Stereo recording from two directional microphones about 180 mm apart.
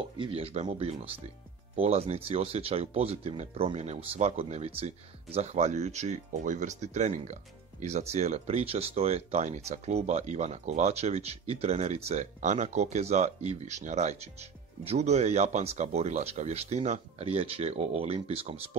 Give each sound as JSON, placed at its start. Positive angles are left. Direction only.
{"t": 0.2, "sound": "speech", "side_deg": -35}